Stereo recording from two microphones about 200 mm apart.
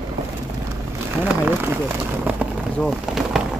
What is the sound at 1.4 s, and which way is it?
Speech, 10° right (ahead or behind).